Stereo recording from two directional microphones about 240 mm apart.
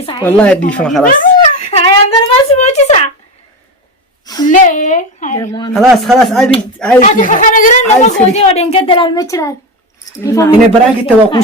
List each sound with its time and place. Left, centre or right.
0.0 s speech: centre
0.3 s speech: centre
1.0 s a sound: left
1.8 s speech: left
4.4 s a woman's voice: left
5.4 s speech: centre
5.7 s speech: centre
7.0 s speech: left; by 10.5 s centre
11.0 s speech: left